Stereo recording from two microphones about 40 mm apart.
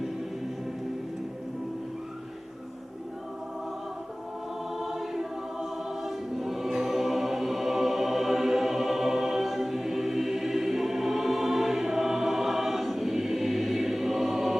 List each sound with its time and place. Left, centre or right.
4.7 s choir: centre